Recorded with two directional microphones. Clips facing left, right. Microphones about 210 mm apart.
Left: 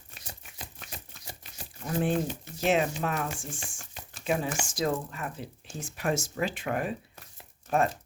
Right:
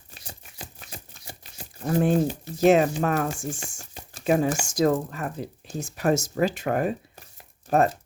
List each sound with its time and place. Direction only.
1.8 s speech: 40° right (ahead or behind)